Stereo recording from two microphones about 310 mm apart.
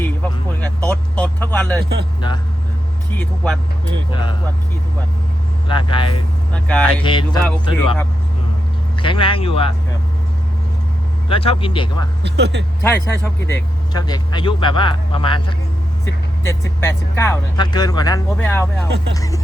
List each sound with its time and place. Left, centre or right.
0.0 s vehicle: centre
2.2 s speech: centre
3.2 s speech: centre
5.6 s speech: centre
6.5 s speech: centre
6.8 s speech: centre
11.3 s speech: centre
12.2 s speech: right
12.8 s speech: centre